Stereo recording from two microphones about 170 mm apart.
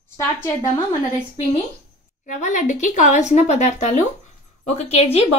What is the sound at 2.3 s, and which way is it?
A woman's voice, 45° left (ahead or behind).